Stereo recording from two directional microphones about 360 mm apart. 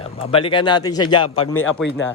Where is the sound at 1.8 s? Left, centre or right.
Centre.